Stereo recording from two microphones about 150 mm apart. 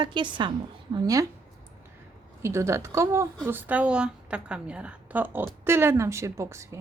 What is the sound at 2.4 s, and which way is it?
A woman's voice, 20° right (ahead or behind).